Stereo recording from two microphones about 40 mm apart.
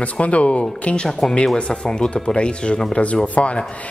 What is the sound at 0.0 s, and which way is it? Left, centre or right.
A woman's voice, left.